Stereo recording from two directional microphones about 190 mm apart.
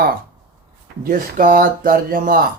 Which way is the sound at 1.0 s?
45° right (ahead or behind).